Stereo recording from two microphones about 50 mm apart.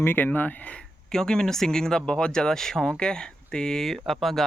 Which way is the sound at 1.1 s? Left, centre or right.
Centre.